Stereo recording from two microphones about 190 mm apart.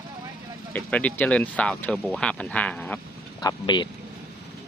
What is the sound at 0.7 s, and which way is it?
Speech, 5° left (ahead or behind).